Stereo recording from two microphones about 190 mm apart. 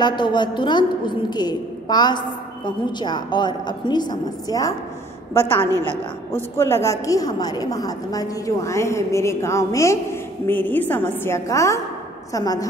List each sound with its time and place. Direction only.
0.0 s a woman's voice: 25° left (ahead or behind)